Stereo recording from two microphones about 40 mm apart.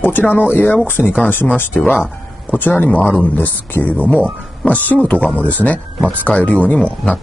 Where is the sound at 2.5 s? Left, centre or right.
Left.